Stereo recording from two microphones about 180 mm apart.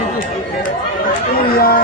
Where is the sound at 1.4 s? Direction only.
55° left (ahead or behind).